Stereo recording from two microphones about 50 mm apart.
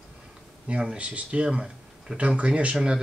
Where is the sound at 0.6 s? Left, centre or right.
Right.